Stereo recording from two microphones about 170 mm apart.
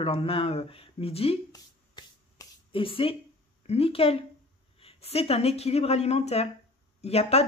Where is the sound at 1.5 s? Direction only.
25° left (ahead or behind).